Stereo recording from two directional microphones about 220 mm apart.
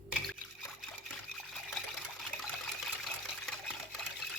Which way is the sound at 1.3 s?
Centre (ahead or behind).